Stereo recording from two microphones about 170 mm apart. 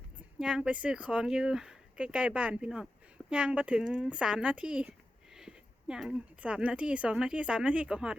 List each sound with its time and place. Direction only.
0.2 s speech: 5° right (ahead or behind)